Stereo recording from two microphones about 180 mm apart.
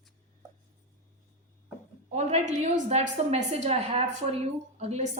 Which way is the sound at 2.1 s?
35° right (ahead or behind).